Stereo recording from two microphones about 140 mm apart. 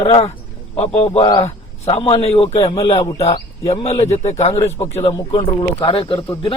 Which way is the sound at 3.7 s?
50° left (ahead or behind).